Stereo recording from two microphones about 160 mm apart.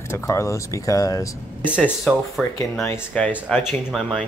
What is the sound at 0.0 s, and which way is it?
Speech, 15° left (ahead or behind).